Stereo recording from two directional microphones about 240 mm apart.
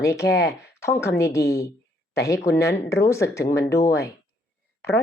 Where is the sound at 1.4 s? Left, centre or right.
Left.